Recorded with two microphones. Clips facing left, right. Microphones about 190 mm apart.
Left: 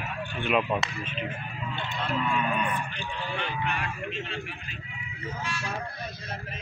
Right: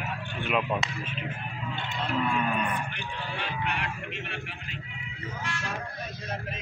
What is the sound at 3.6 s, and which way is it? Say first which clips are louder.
Speech: left 1 dB; 70° right (ahead or behind).